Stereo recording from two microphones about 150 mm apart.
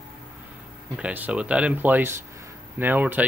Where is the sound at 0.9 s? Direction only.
10° right (ahead or behind).